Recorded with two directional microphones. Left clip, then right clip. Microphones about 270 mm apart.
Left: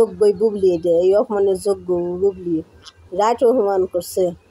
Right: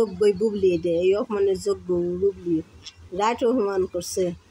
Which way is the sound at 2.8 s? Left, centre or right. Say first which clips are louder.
Left 8 dB; centre.